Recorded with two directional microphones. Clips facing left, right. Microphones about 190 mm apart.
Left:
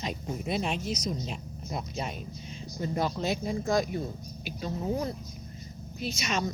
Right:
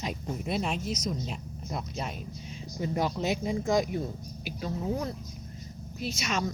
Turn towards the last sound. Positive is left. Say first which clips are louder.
# even
turn(degrees=0)  # may be behind; listen again after turning